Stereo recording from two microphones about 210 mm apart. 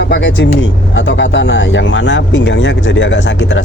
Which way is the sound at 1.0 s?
60° left (ahead or behind).